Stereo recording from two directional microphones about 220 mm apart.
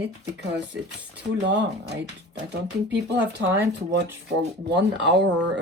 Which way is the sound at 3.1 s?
50° right (ahead or behind).